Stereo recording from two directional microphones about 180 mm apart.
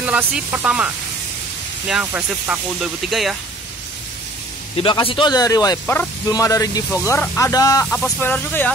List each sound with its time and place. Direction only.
0.0 s speech: 10° right (ahead or behind)
4.7 s speech: 30° left (ahead or behind); by 8.7 s 10° left (ahead or behind)